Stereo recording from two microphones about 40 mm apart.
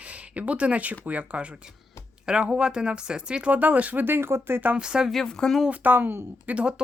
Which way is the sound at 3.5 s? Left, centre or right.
Right.